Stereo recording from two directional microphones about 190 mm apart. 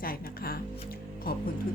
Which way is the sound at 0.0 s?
50° left (ahead or behind).